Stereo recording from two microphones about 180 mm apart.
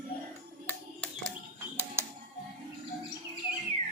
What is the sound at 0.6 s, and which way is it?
Music, 5° left (ahead or behind).